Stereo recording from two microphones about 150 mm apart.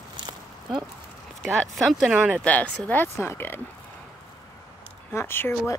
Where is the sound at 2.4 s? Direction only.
10° left (ahead or behind).